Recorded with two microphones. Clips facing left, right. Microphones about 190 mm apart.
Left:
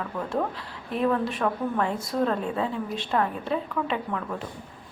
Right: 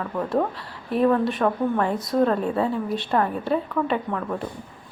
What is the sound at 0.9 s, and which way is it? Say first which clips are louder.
Speech: right 5 dB; centre (ahead or behind).